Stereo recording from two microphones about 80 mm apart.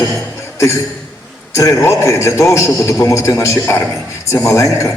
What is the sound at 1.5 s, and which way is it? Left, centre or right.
A man's voice, left.